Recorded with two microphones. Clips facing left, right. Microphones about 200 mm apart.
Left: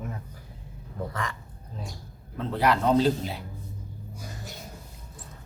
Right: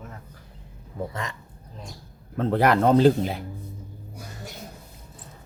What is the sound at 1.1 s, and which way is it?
Speech, 25° right (ahead or behind).